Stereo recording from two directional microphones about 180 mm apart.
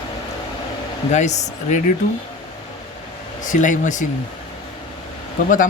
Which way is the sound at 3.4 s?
45° left (ahead or behind).